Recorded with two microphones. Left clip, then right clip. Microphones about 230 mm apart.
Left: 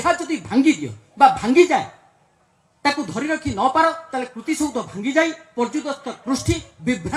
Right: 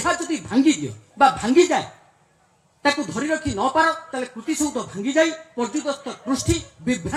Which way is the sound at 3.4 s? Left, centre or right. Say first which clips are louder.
Left 3 dB; left.